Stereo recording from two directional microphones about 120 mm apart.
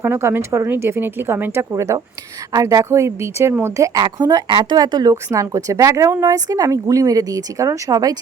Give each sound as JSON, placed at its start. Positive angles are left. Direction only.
{"t": 0.0, "sound": "speech", "side_deg": -20}